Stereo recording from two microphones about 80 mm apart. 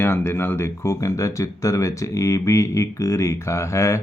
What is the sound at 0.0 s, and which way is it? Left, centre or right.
Speech, left.